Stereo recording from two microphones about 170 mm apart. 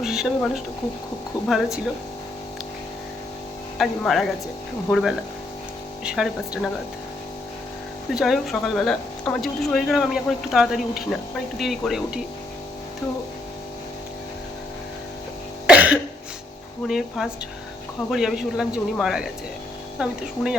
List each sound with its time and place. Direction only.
0.0 s speech: centre (ahead or behind)
3.8 s speech: centre (ahead or behind)
8.1 s speech: centre (ahead or behind)
15.6 s cough: 10° right (ahead or behind)
16.8 s speech: centre (ahead or behind)